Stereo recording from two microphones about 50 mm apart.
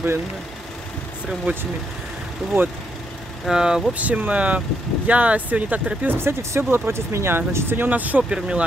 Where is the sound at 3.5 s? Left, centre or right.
Centre.